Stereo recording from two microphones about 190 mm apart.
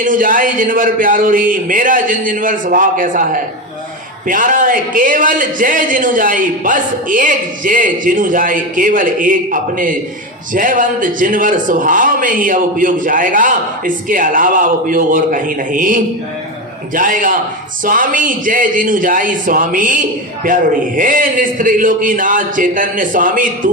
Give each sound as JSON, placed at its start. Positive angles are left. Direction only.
{"t": 0.0, "sound": "a man's voice", "side_deg": -45}